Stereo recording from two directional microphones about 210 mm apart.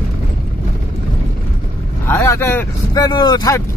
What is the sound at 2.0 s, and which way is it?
Speech, 15° left (ahead or behind).